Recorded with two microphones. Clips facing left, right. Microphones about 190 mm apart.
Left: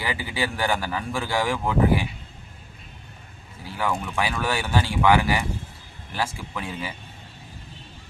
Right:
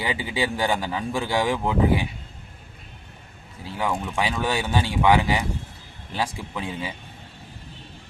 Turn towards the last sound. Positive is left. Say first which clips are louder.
# right 1 dB
turn(degrees=-20)  # may be behind; listen again after turning